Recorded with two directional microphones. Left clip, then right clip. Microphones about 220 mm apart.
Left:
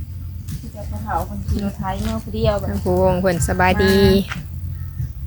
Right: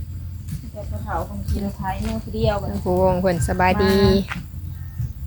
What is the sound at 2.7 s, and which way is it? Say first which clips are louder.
Speech: left 1 dB; 10° left (ahead or behind).